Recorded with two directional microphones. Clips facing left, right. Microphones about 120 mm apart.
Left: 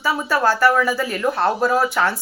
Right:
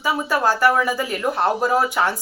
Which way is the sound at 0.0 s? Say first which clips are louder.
Left 1 dB; 15° right (ahead or behind).